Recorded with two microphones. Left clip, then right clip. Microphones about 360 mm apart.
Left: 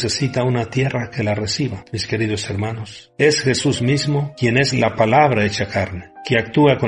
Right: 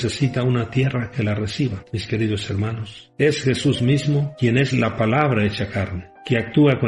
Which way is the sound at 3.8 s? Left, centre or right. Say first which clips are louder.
Left 2 dB; centre.